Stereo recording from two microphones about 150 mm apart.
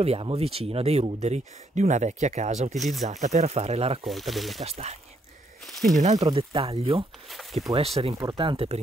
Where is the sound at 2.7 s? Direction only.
Centre (ahead or behind).